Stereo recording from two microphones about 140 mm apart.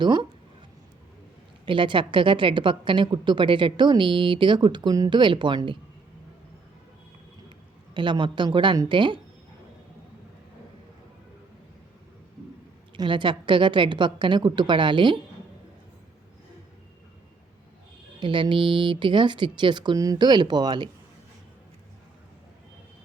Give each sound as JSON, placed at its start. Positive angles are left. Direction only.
{"t": 0.0, "sound": "speech", "side_deg": -35}
{"t": 1.6, "sound": "speech", "side_deg": -35}
{"t": 7.9, "sound": "speech", "side_deg": -35}
{"t": 13.0, "sound": "speech", "side_deg": -35}
{"t": 18.2, "sound": "speech", "side_deg": -35}